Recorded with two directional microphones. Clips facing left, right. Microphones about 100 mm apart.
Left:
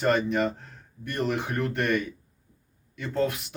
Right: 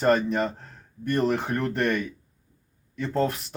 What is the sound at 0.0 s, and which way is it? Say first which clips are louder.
Speech: right 2 dB; 40° right (ahead or behind).